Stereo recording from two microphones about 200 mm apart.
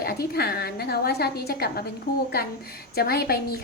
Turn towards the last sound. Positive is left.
turn(degrees=50)  # may be behind; listen again after turning